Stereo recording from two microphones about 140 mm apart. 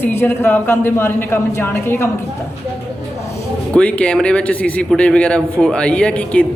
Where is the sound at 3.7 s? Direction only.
10° left (ahead or behind).